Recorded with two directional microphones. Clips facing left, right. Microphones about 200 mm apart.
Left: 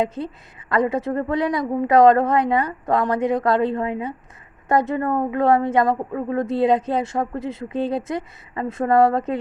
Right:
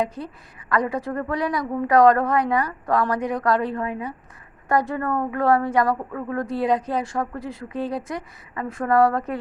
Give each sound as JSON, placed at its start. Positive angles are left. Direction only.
{"t": 0.0, "sound": "speech", "side_deg": 25}